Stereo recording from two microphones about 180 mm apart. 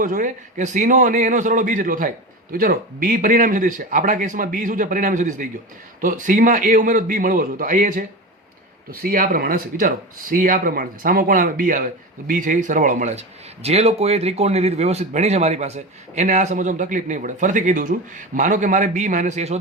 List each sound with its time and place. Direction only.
0.0 s a man's voice: 50° right (ahead or behind)